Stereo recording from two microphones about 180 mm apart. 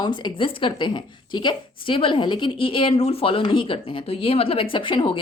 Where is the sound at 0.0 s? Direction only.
25° left (ahead or behind).